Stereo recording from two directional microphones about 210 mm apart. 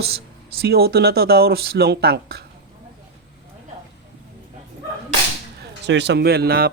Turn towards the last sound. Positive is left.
turn(degrees=-45)  # may be behind; listen again after turning